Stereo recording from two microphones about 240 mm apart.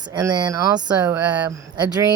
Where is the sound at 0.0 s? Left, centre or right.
Centre.